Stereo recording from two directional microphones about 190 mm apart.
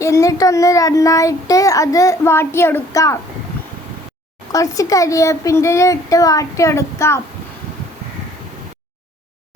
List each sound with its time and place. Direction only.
0.0 s a child's voice: 15° left (ahead or behind)
4.5 s a child's voice: 20° left (ahead or behind)